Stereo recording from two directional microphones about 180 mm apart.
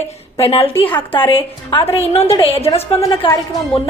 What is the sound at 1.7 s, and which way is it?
A woman's voice, 30° left (ahead or behind).